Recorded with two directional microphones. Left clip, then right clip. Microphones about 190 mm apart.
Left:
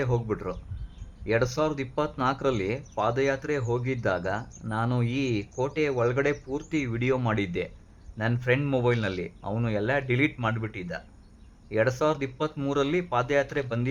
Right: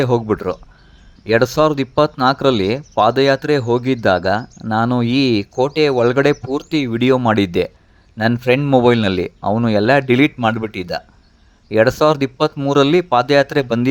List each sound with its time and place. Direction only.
0.0 s speech: 45° right (ahead or behind)